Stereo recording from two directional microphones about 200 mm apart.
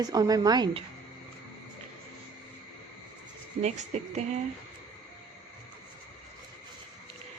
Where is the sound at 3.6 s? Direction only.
35° right (ahead or behind).